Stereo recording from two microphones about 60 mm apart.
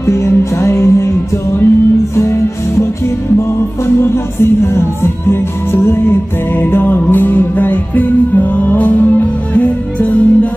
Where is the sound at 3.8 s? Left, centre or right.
Left.